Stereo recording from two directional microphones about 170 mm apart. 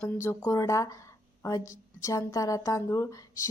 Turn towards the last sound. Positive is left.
turn(degrees=20)  # may be behind; listen again after turning